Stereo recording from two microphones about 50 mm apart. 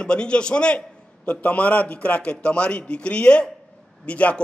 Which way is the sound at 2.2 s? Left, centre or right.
Left.